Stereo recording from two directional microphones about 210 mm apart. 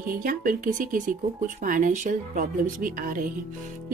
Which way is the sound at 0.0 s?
40° right (ahead or behind).